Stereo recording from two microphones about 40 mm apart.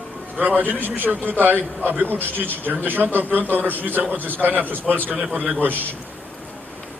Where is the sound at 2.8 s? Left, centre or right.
Right.